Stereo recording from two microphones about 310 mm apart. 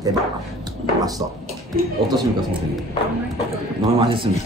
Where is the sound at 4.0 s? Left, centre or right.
Centre.